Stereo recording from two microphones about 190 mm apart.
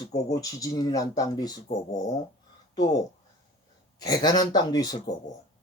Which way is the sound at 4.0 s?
20° left (ahead or behind).